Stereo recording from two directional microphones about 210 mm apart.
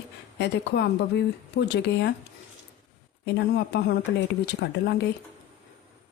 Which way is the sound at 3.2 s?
50° left (ahead or behind).